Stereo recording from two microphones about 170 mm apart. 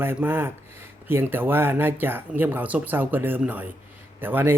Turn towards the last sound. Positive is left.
turn(degrees=-10)  # may be behind; listen again after turning